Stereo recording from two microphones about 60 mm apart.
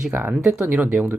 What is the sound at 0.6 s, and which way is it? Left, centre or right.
Speech, right.